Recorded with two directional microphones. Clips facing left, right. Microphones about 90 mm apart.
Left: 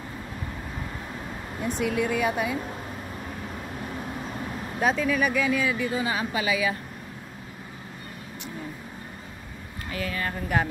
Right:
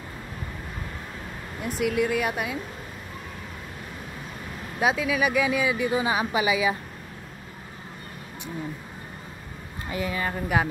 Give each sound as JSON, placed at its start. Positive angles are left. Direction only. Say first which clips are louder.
{"t": 1.6, "sound": "speech", "louder": "right 1 dB", "side_deg": -5}
{"t": 4.7, "sound": "speech", "louder": "even", "side_deg": -5}
{"t": 9.8, "sound": "speech", "louder": "right 2 dB", "side_deg": -20}